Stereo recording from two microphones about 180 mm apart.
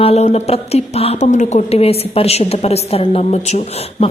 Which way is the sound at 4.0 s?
35° left (ahead or behind).